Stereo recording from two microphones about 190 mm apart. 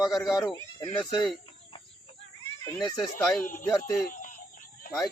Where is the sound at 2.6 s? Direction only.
10° left (ahead or behind).